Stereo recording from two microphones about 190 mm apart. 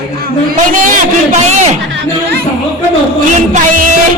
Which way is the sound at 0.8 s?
40° right (ahead or behind).